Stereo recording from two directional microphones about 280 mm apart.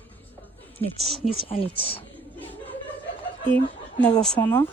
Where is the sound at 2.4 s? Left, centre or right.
Centre.